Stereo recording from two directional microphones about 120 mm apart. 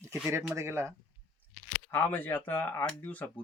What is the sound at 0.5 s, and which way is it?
Speech, 20° right (ahead or behind).